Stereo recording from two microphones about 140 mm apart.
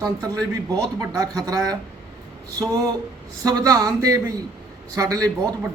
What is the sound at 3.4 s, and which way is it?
Speech, 25° right (ahead or behind).